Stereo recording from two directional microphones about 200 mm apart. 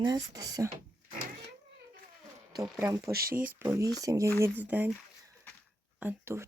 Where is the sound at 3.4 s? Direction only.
10° right (ahead or behind).